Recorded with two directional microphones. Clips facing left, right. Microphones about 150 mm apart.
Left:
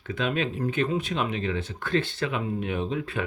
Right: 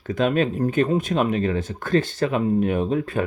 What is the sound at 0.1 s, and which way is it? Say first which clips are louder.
Speech: right 7 dB; 45° right (ahead or behind).